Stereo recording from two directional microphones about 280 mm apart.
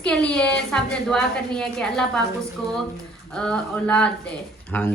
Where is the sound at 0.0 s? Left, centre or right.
Centre.